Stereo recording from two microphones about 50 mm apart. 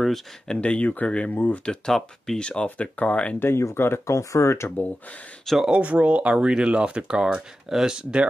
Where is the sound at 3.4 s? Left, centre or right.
Left.